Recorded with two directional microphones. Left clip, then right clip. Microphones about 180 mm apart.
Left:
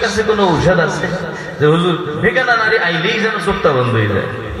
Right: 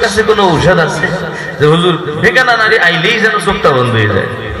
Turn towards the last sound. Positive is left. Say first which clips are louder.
# right 4 dB
turn(degrees=-25)  # may be behind; listen again after turning